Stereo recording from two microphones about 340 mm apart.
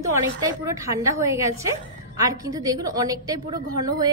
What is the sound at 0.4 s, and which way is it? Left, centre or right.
A woman's voice, centre.